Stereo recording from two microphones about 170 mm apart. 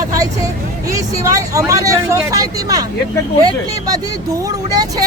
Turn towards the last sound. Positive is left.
turn(degrees=-20)  # may be behind; listen again after turning